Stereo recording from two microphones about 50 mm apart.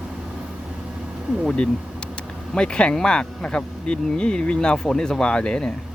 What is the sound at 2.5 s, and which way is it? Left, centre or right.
Speech, centre.